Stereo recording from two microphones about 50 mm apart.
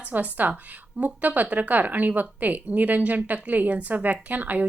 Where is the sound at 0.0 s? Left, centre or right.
Right.